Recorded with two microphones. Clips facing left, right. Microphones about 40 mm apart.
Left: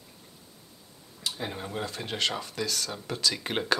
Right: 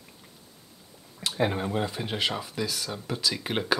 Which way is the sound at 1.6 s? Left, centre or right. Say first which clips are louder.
Right 5 dB; centre.